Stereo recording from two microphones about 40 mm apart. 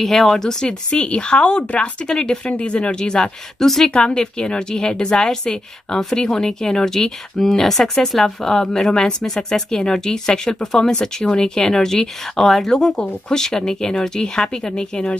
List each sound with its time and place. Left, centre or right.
0.0 s speech: centre
0.7 s speech: left
2.0 s speech: centre
3.5 s speech: centre
3.9 s speech: left